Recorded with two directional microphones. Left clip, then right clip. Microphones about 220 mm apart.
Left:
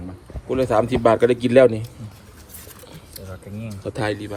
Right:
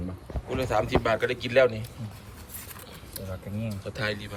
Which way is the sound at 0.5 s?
10° left (ahead or behind).